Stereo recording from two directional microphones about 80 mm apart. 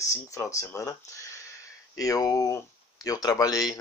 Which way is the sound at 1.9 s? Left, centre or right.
Left.